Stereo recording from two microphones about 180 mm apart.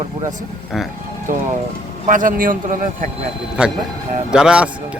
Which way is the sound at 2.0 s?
45° right (ahead or behind).